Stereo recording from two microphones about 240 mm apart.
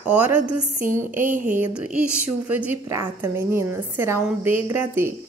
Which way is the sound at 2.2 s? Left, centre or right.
Centre.